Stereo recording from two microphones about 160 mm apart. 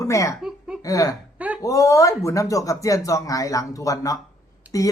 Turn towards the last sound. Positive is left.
turn(degrees=-10)  # may be behind; listen again after turning